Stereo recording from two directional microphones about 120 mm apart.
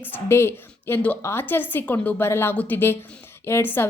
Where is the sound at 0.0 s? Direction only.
20° left (ahead or behind).